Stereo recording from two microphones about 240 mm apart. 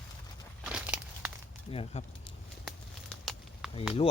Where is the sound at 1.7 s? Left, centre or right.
Left.